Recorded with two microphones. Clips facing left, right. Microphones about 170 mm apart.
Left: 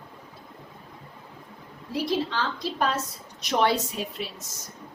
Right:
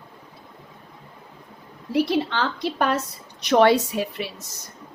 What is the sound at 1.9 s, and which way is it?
A woman's voice, 65° right (ahead or behind).